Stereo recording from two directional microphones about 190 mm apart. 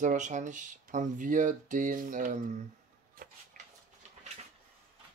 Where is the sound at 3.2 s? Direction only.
45° right (ahead or behind).